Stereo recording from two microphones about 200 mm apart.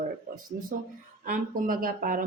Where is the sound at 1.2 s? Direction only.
45° right (ahead or behind).